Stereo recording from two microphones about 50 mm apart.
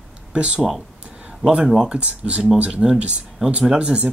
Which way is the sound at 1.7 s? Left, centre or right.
Centre.